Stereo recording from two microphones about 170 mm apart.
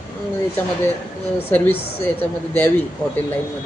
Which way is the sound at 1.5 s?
10° left (ahead or behind).